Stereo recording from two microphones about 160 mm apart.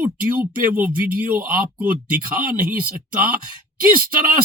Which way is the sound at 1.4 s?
60° right (ahead or behind).